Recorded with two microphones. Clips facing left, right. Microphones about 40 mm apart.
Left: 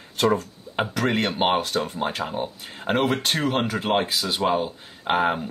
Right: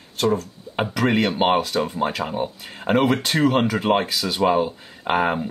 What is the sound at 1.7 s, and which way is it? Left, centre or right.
Speech, right.